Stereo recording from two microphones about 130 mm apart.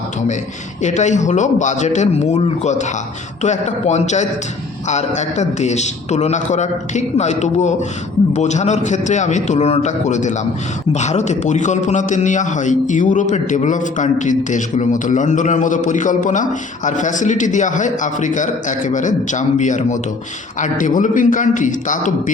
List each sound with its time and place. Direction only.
0.8 s a man's voice: 65° left (ahead or behind); by 22.1 s 80° left